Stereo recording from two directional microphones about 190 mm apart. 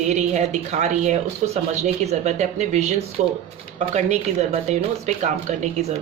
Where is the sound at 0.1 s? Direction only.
35° right (ahead or behind).